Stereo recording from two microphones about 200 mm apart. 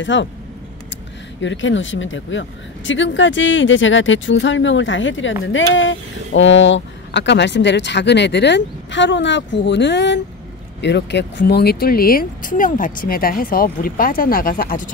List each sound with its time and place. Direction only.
0.0 s speech: 65° left (ahead or behind)
1.4 s speech: 65° left (ahead or behind); by 14.9 s 45° left (ahead or behind)